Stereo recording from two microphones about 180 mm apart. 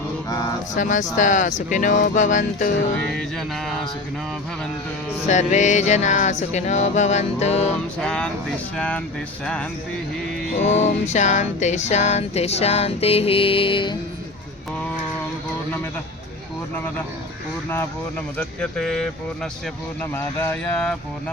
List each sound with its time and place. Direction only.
0.8 s speech: 45° left (ahead or behind)
3.2 s speech: centre (ahead or behind)
5.3 s music: 40° left (ahead or behind)
7.9 s speech: 5° left (ahead or behind)
10.6 s music: 40° left (ahead or behind)
18.3 s speech: 5° left (ahead or behind)